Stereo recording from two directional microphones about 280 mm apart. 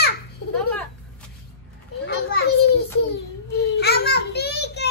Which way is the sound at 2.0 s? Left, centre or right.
Left.